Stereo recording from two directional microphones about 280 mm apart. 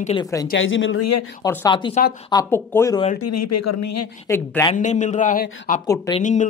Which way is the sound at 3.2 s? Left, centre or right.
Left.